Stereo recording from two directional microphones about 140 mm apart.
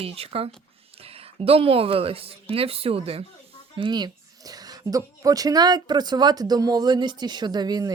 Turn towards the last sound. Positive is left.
turn(degrees=-30)  # may be behind; listen again after turning